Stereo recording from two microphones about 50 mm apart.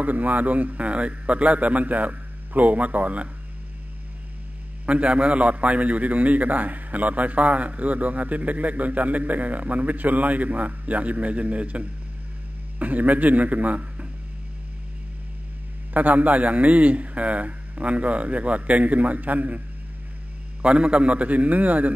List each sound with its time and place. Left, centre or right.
0.0 s a man's voice: right
4.8 s a man's voice: right
15.9 s a man's voice: right
20.6 s a man's voice: right